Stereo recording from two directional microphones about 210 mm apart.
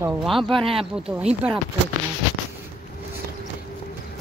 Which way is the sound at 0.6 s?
25° right (ahead or behind).